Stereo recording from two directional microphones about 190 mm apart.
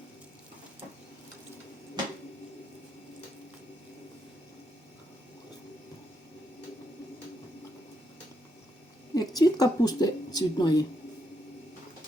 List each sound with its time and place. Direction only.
9.1 s speech: 20° left (ahead or behind)